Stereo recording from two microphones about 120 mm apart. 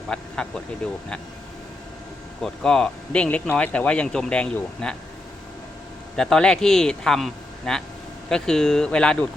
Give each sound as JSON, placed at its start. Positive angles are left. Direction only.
{"t": 0.1, "sound": "speech", "side_deg": 5}
{"t": 2.4, "sound": "speech", "side_deg": 5}
{"t": 6.1, "sound": "speech", "side_deg": 5}